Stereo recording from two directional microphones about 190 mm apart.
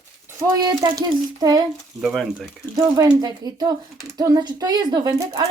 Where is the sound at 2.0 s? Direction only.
Centre (ahead or behind).